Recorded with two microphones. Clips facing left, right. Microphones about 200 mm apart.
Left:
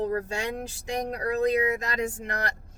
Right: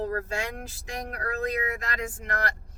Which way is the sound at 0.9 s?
20° left (ahead or behind).